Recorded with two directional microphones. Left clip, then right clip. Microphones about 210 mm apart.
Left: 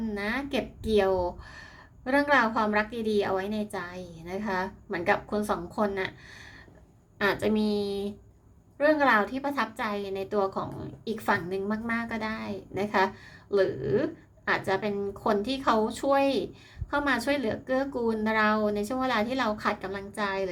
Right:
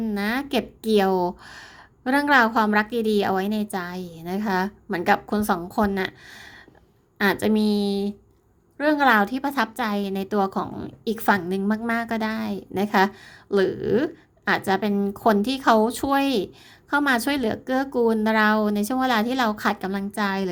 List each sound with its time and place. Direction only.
0.0 s a woman's voice: 40° right (ahead or behind)